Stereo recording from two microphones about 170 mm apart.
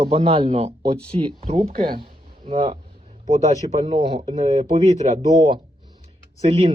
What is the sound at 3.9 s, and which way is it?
Speech, 30° right (ahead or behind).